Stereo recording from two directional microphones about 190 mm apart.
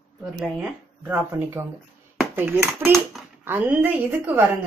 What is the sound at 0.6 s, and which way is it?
A woman's voice, 10° right (ahead or behind).